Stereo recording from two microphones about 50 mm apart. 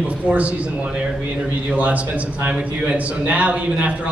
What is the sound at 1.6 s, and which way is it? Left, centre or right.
A man's voice, right.